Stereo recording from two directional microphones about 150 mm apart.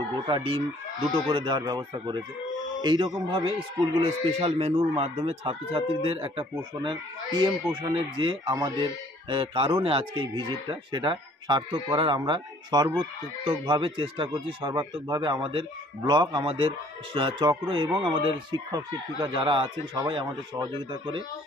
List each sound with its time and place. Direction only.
0.3 s speech: 35° right (ahead or behind)
7.7 s speech: 30° right (ahead or behind)